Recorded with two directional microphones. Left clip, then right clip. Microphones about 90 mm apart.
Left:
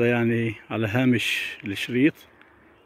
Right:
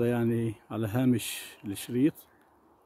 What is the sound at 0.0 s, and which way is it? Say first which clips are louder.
Speech: left 6 dB; 10° right (ahead or behind).